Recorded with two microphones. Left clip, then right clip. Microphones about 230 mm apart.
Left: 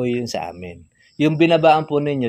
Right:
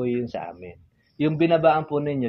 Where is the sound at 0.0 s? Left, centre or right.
Left.